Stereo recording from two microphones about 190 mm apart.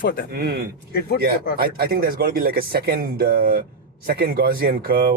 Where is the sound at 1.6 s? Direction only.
50° right (ahead or behind).